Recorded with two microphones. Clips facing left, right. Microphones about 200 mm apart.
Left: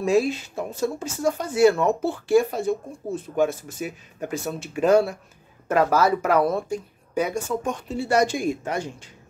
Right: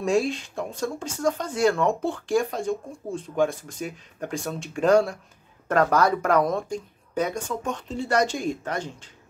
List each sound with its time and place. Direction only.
0.0 s speech: centre (ahead or behind)